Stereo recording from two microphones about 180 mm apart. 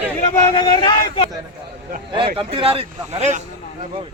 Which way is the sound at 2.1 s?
30° right (ahead or behind).